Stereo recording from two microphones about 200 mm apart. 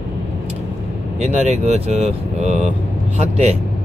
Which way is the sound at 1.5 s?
30° right (ahead or behind).